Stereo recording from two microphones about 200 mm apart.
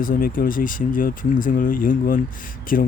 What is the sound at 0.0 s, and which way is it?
Speech, 45° left (ahead or behind).